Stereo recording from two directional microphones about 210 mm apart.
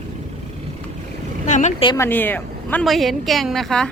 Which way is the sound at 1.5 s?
35° left (ahead or behind).